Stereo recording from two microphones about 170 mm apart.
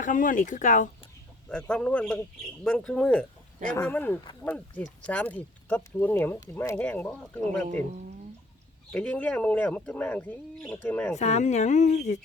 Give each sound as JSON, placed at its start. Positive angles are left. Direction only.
{"t": 0.0, "sound": "speech", "side_deg": 55}
{"t": 1.5, "sound": "a man's voice", "side_deg": 5}
{"t": 8.9, "sound": "speech", "side_deg": 5}
{"t": 11.1, "sound": "speech", "side_deg": 40}